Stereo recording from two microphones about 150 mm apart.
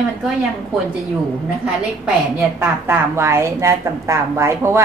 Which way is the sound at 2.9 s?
15° right (ahead or behind).